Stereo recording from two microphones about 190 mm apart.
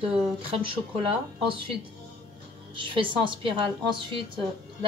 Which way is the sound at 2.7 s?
25° right (ahead or behind).